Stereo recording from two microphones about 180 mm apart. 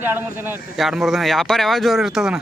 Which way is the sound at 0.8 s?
Centre (ahead or behind).